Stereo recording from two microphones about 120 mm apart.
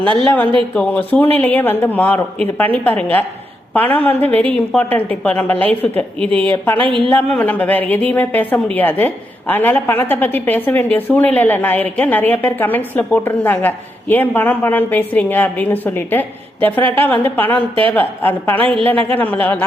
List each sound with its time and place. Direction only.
0.0 s speech: 45° right (ahead or behind)
0.7 s a woman's voice: 10° left (ahead or behind)
6.7 s speech: 45° right (ahead or behind)
7.3 s a woman's voice: 15° left (ahead or behind)